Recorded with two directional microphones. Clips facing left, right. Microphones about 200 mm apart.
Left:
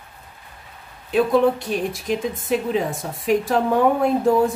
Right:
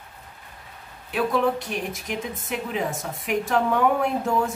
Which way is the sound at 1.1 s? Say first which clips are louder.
Left 6 dB; 30° left (ahead or behind).